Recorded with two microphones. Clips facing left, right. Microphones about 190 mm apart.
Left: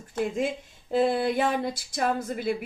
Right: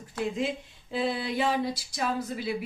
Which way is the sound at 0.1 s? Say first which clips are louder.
Left 3 dB; 50° left (ahead or behind).